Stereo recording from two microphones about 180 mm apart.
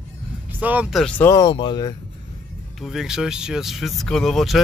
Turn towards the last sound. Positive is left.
turn(degrees=0)  # may be behind; listen again after turning